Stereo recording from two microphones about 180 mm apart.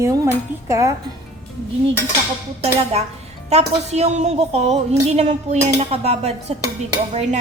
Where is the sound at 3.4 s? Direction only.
35° right (ahead or behind).